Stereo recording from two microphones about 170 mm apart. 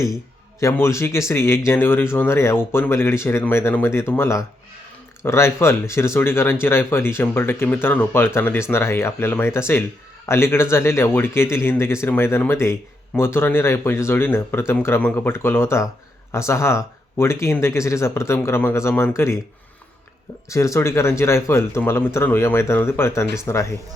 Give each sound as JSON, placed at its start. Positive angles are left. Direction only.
{"t": 0.6, "sound": "speech", "side_deg": 15}
{"t": 20.5, "sound": "speech", "side_deg": 15}